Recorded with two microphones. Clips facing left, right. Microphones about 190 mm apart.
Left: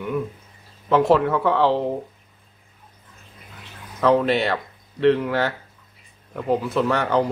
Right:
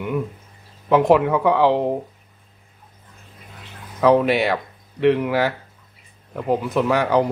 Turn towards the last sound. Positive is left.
turn(degrees=-10)  # may be behind; listen again after turning